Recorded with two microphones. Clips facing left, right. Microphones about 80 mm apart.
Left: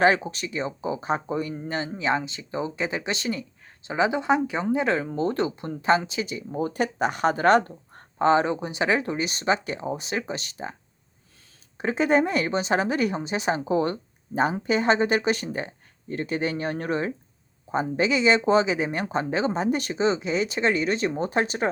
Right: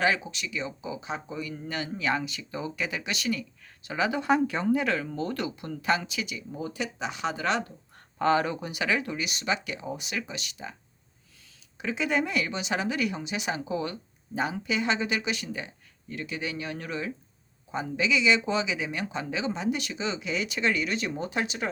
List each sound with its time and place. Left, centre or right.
0.0 s speech: left
1.5 s speech: left
8.2 s speech: left
11.8 s speech: left